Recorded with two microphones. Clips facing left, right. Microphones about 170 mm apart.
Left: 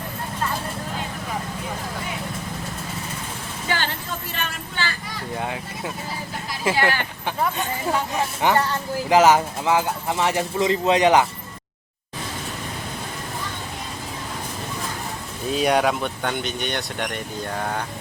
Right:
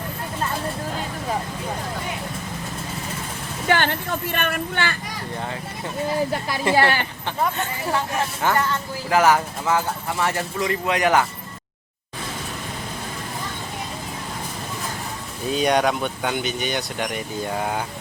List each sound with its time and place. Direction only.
3.7 s a woman's voice: 60° right (ahead or behind)
5.4 s speech: 10° left (ahead or behind)
7.5 s speech: 15° left (ahead or behind)
15.4 s speech: centre (ahead or behind)